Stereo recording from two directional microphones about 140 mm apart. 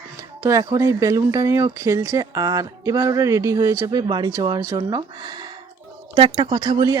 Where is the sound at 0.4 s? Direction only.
25° right (ahead or behind).